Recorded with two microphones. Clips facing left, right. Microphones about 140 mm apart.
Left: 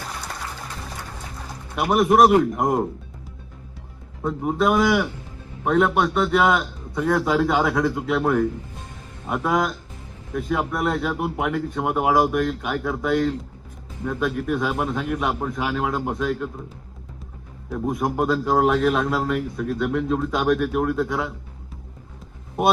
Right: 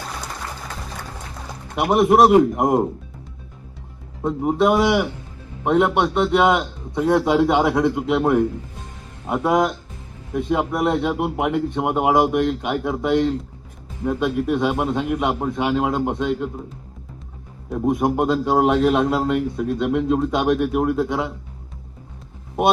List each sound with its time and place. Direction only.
1.7 s a man's voice: 20° right (ahead or behind)
4.2 s a man's voice: 25° right (ahead or behind)
17.7 s a man's voice: 25° right (ahead or behind)